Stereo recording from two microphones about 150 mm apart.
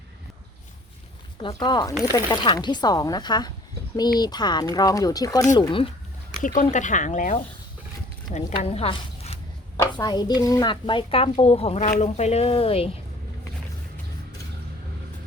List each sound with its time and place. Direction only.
1.5 s speech: 25° left (ahead or behind)
6.4 s a woman's voice: 65° left (ahead or behind); by 9.4 s 40° left (ahead or behind)
9.7 s speech: 25° left (ahead or behind); by 12.9 s 40° left (ahead or behind)